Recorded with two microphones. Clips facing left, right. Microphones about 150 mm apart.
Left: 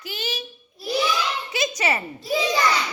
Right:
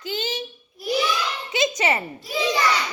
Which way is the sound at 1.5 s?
25° right (ahead or behind).